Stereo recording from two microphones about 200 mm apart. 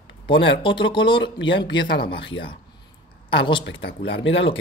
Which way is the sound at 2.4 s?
50° left (ahead or behind).